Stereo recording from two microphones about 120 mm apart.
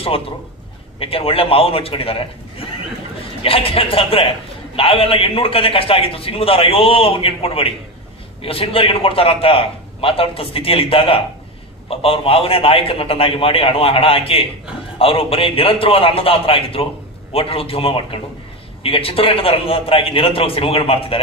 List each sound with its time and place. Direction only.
0.9 s a man's voice: 50° left (ahead or behind)